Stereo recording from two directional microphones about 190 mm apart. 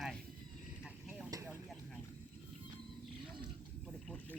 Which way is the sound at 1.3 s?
20° right (ahead or behind).